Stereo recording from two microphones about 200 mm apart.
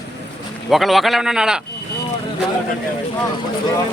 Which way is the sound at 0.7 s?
Centre (ahead or behind).